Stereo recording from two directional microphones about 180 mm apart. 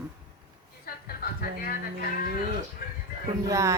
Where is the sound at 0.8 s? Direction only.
55° left (ahead or behind).